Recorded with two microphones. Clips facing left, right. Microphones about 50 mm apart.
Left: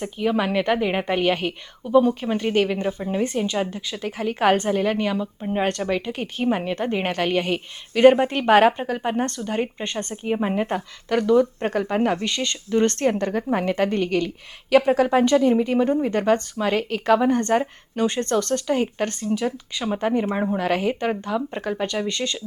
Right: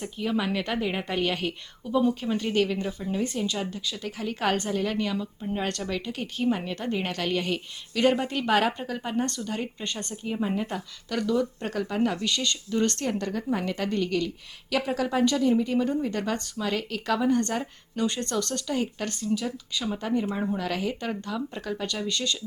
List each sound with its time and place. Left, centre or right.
0.0 s speech: left